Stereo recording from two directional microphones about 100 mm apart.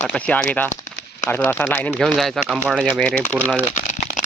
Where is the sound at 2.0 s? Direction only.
Centre (ahead or behind).